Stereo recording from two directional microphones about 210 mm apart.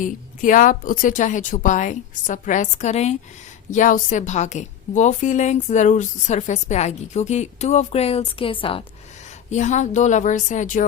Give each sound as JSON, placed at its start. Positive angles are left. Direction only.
{"t": 0.0, "sound": "a woman's voice", "side_deg": 40}